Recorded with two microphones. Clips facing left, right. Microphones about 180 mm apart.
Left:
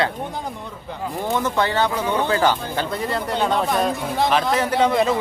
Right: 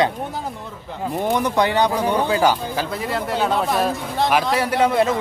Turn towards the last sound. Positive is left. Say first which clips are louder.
# right 1 dB
turn(degrees=-5)  # may be behind; listen again after turning